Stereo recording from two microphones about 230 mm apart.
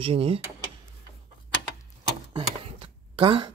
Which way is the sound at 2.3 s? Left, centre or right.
Right.